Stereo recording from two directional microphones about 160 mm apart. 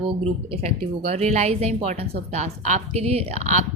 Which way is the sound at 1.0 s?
40° right (ahead or behind).